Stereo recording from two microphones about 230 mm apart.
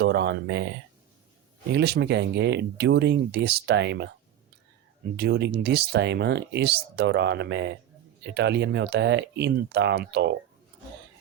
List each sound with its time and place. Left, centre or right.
0.0 s speech: right
1.7 s speech: right
5.1 s speech: right